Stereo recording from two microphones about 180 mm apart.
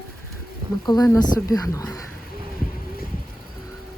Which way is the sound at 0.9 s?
20° left (ahead or behind).